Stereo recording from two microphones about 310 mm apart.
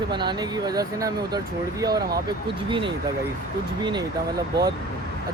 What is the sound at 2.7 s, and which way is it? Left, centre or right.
Speech, centre.